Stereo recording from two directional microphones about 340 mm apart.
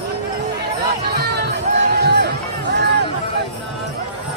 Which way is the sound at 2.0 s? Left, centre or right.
Right.